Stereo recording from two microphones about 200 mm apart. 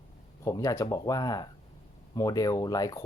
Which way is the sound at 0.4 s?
15° left (ahead or behind).